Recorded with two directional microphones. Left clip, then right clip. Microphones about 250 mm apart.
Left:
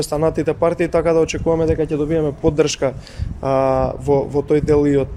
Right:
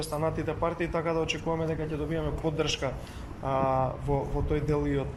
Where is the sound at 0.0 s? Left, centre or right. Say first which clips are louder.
Left 12 dB; left.